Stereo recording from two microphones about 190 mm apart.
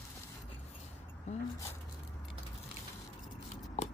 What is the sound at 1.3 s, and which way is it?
Speech, 35° left (ahead or behind).